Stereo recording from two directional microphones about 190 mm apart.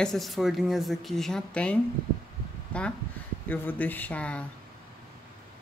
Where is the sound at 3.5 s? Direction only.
10° left (ahead or behind).